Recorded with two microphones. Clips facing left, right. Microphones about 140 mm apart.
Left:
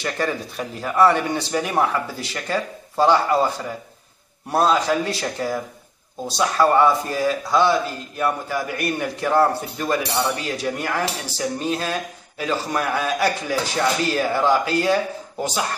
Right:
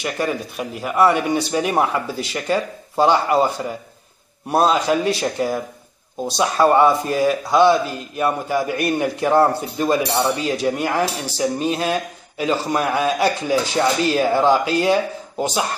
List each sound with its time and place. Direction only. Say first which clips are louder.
0.0 s a man's voice: right 2 dB; 15° right (ahead or behind)